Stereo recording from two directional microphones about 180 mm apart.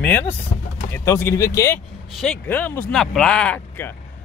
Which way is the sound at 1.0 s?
15° left (ahead or behind).